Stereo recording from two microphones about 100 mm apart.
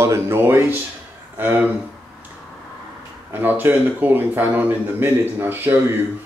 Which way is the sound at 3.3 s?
20° right (ahead or behind).